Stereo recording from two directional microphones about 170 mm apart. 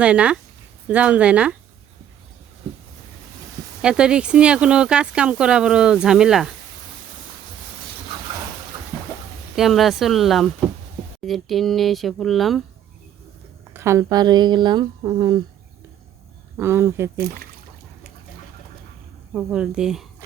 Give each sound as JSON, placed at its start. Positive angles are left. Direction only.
{"t": 0.0, "sound": "speech", "side_deg": -5}
{"t": 3.8, "sound": "speech", "side_deg": -5}
{"t": 9.6, "sound": "speech", "side_deg": 0}
{"t": 13.7, "sound": "speech", "side_deg": -15}
{"t": 16.6, "sound": "speech", "side_deg": -15}
{"t": 19.3, "sound": "speech", "side_deg": -5}